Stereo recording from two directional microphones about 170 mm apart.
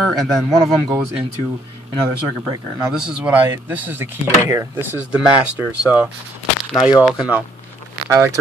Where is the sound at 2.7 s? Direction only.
5° right (ahead or behind).